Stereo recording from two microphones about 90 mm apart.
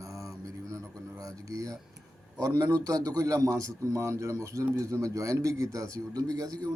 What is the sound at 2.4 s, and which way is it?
A man's voice, 45° right (ahead or behind).